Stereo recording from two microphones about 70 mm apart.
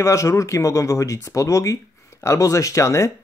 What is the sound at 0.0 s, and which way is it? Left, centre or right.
Speech, left.